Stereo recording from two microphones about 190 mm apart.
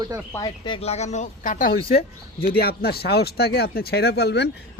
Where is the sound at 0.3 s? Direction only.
25° left (ahead or behind).